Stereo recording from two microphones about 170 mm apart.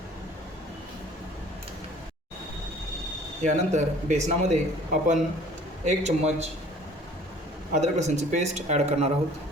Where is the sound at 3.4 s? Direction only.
45° right (ahead or behind).